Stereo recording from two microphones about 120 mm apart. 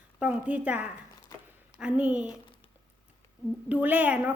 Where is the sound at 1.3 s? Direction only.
30° left (ahead or behind).